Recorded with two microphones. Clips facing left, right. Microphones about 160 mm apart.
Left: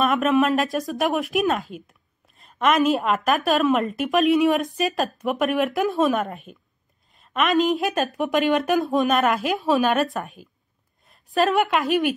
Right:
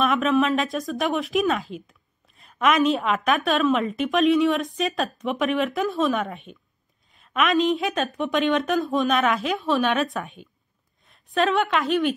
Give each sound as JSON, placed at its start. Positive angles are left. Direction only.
{"t": 0.0, "sound": "a woman's voice", "side_deg": 0}